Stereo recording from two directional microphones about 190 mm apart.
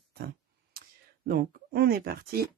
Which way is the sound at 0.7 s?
50° right (ahead or behind).